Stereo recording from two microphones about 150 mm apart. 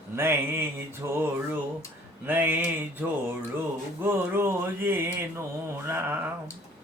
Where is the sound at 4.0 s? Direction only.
15° right (ahead or behind).